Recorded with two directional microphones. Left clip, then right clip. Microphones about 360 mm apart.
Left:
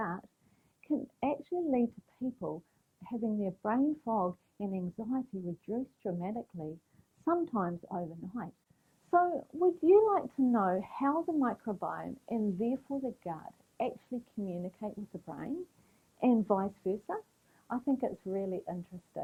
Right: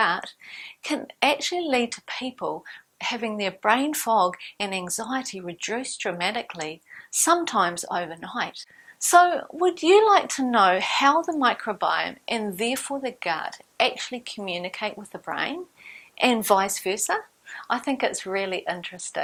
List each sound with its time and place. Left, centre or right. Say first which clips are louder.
0.0 s a sound: right 16 dB; centre
0.9 s speech: right 11 dB; centre
2.2 s speech: right 7 dB; centre
3.0 s a woman's voice: right 10 dB; centre
4.1 s a woman's voice: right 16 dB; centre
4.5 s a woman's voice: right 12 dB; centre